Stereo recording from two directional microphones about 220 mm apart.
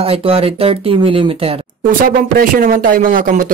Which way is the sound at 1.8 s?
40° right (ahead or behind).